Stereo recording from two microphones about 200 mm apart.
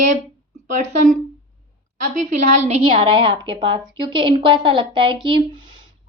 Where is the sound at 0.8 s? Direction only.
40° right (ahead or behind).